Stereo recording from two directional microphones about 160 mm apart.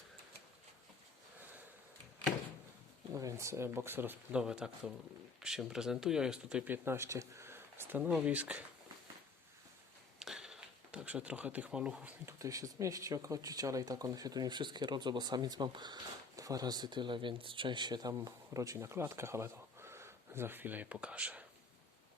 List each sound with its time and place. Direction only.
3.2 s speech: 20° right (ahead or behind)
10.2 s speech: centre (ahead or behind)
12.4 s speech: 20° right (ahead or behind)